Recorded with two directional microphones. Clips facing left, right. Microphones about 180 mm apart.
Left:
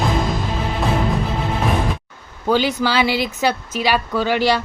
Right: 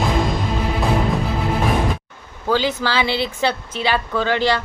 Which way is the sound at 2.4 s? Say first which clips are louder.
Left 2 dB; 15° left (ahead or behind).